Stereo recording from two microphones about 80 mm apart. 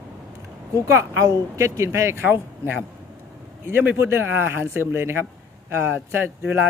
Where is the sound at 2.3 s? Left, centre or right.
Right.